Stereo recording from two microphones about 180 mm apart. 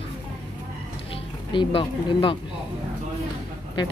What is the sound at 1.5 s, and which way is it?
Speech, 30° left (ahead or behind).